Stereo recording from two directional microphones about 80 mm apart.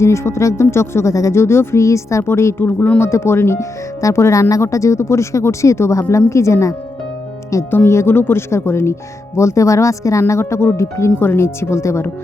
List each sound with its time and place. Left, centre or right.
0.0 s speech: left
2.6 s speech: left